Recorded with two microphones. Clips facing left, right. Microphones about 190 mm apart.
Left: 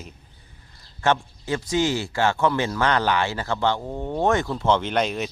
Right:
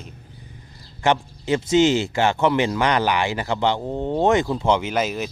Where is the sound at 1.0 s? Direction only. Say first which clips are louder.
Right 2 dB; 15° right (ahead or behind).